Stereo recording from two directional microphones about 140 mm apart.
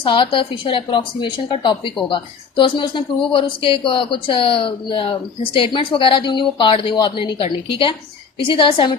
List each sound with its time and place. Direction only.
0.0 s a woman's voice: 40° left (ahead or behind)